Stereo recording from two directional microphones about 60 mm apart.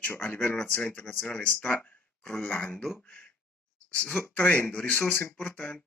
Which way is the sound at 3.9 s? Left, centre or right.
Left.